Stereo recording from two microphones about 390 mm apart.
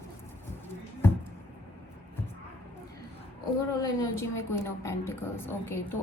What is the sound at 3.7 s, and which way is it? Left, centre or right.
A woman's voice, centre.